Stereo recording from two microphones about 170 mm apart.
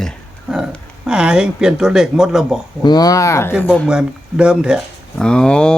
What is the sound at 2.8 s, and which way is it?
Speech, 25° left (ahead or behind).